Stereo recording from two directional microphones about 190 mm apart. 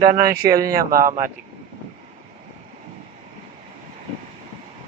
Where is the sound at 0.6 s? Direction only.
50° right (ahead or behind).